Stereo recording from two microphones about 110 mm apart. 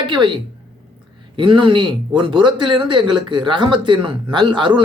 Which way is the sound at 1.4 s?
50° right (ahead or behind).